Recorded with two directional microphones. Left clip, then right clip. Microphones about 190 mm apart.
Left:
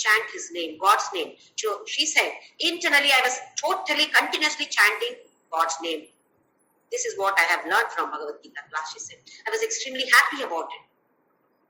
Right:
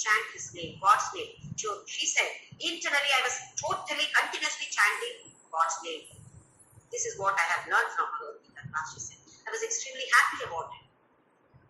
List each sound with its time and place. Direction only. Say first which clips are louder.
0.0 s a man's voice: left 6 dB; 50° left (ahead or behind)
6.9 s a man's voice: left 6 dB; 50° left (ahead or behind)